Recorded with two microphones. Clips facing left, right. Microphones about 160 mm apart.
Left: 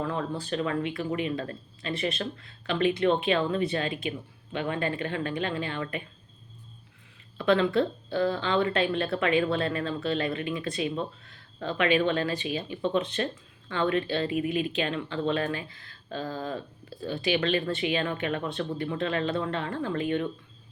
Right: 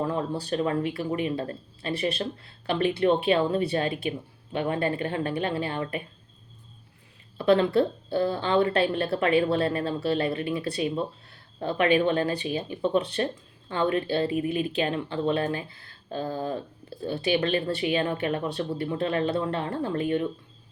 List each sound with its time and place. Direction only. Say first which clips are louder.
0.0 s speech: right 3 dB; 35° right (ahead or behind)
7.3 s speech: right 3 dB; 35° right (ahead or behind)